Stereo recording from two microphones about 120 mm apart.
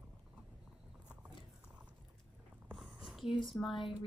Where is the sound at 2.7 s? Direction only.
Centre (ahead or behind).